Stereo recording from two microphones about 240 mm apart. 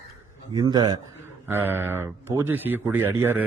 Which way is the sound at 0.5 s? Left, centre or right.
Centre.